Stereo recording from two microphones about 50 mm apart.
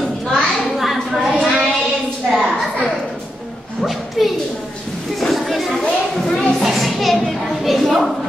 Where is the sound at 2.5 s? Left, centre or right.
Centre.